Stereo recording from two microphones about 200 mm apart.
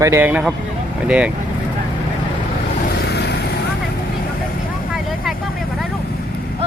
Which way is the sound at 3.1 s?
55° left (ahead or behind).